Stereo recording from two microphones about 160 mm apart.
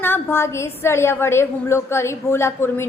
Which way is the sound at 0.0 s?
15° left (ahead or behind).